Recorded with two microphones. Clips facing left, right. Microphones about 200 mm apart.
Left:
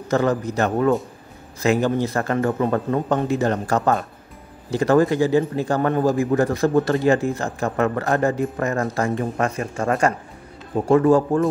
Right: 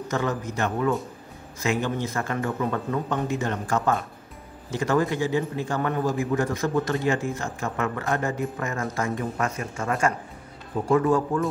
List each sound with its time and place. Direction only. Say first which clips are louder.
0.1 s speech: left 8 dB; 35° left (ahead or behind)